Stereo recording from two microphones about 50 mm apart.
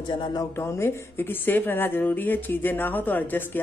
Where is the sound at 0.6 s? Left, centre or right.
Left.